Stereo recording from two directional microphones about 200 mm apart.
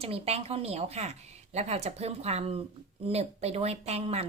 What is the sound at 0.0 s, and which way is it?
Speech, 30° right (ahead or behind).